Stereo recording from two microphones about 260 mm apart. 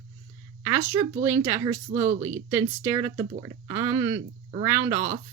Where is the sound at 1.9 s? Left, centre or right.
Right.